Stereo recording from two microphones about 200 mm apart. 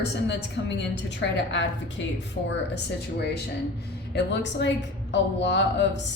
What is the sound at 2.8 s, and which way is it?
A woman's voice, 55° left (ahead or behind).